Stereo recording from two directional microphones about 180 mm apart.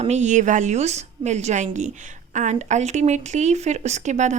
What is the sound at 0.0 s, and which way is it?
A woman's voice, 40° right (ahead or behind).